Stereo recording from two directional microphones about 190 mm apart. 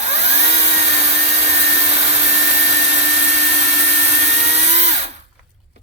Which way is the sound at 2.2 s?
35° right (ahead or behind).